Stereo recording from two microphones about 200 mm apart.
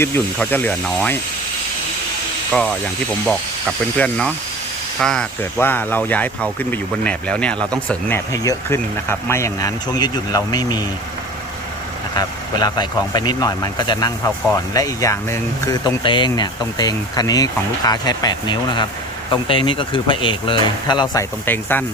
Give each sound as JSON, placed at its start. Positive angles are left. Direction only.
{"t": 0.0, "sound": "speech", "side_deg": 10}
{"t": 2.5, "sound": "speech", "side_deg": 0}
{"t": 3.9, "sound": "speech", "side_deg": 5}
{"t": 12.1, "sound": "speech", "side_deg": 20}